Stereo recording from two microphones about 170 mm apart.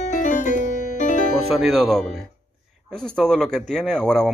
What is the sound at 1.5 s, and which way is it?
Speech, centre (ahead or behind).